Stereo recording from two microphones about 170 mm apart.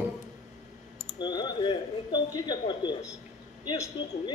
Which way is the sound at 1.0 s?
25° left (ahead or behind).